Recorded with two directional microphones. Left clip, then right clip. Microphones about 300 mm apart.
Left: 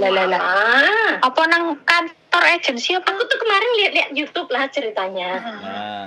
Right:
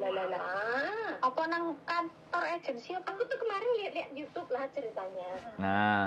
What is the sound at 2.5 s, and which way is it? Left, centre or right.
A woman's voice, left.